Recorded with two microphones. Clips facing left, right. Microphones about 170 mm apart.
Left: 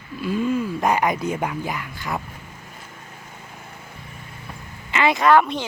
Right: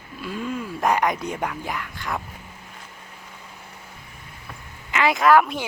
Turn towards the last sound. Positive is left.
turn(degrees=-5)  # may be behind; listen again after turning